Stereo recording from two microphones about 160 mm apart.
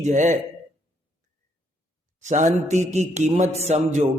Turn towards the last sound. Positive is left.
turn(degrees=-45)  # may be behind; listen again after turning